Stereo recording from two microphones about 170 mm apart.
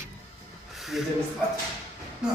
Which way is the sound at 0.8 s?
Centre (ahead or behind).